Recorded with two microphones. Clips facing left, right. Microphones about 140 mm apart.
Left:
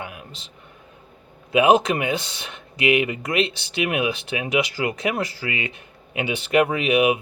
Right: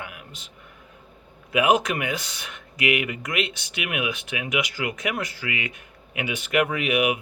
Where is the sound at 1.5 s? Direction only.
25° left (ahead or behind).